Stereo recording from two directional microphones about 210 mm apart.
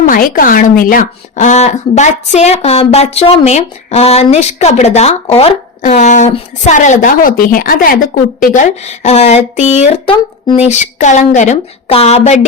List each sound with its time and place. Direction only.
0.0 s a woman's voice: 40° left (ahead or behind)